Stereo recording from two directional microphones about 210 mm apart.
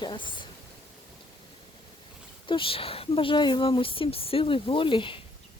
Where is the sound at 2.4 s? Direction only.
25° left (ahead or behind).